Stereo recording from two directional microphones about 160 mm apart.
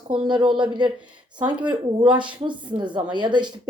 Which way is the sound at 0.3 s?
30° right (ahead or behind).